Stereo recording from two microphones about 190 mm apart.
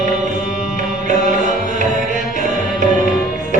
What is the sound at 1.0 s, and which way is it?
Music, 40° right (ahead or behind).